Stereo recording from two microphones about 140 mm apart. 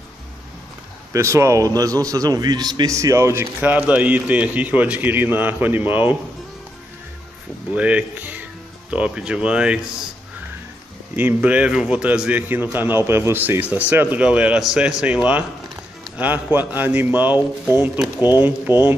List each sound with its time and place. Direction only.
1.1 s a man's voice: 20° right (ahead or behind)
7.7 s a man's voice: 10° right (ahead or behind)
11.1 s a man's voice: 10° right (ahead or behind)